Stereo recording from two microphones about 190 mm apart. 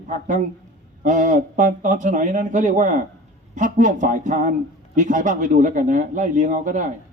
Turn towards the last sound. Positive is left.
turn(degrees=-40)  # may be behind; listen again after turning